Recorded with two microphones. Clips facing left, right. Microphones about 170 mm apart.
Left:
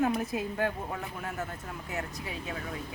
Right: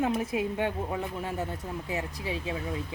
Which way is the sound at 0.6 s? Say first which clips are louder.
Right 2 dB; 25° right (ahead or behind).